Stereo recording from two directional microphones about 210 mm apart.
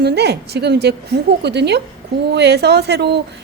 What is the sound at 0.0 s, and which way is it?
Speech, 50° right (ahead or behind).